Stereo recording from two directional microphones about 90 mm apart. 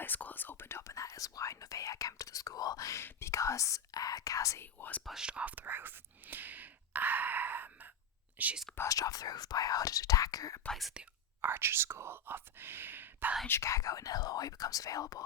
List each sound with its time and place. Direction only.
0.0 s whispering: 20° left (ahead or behind); by 3.0 s 40° left (ahead or behind)
3.0 s speech: 30° left (ahead or behind)
4.6 s speech: 20° left (ahead or behind)
5.0 s speech: 10° right (ahead or behind)
8.7 s speech: 35° left (ahead or behind)
10.7 s speech: centre (ahead or behind)
11.4 s speech: 25° right (ahead or behind)
13.5 s speech: 35° left (ahead or behind)